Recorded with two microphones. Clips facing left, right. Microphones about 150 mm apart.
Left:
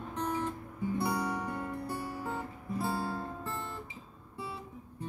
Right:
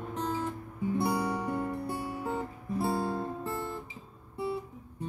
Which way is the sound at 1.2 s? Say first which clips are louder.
Right 4 dB; 30° right (ahead or behind).